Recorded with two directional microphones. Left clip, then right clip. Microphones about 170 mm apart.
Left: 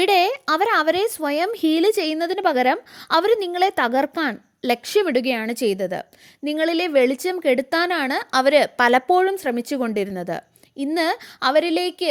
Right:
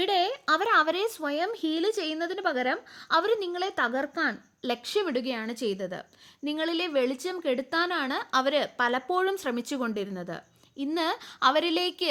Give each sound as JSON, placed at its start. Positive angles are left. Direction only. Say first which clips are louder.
{"t": 0.0, "sound": "speech", "louder": "left 8 dB", "side_deg": 40}